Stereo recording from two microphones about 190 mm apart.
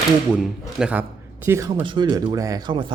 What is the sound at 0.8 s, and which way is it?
A man's voice, 5° right (ahead or behind).